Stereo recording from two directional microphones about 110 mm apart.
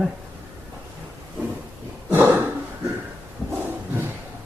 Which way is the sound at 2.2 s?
15° right (ahead or behind).